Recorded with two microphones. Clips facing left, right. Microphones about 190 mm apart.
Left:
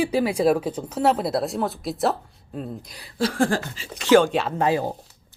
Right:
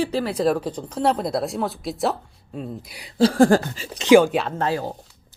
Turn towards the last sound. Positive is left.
turn(degrees=15)  # may be behind; listen again after turning